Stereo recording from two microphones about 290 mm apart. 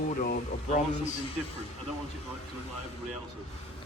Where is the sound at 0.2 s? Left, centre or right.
Left.